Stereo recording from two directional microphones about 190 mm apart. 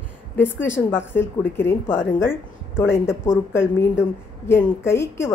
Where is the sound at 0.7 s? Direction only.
10° left (ahead or behind).